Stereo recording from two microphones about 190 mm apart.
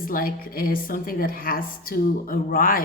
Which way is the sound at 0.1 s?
50° left (ahead or behind).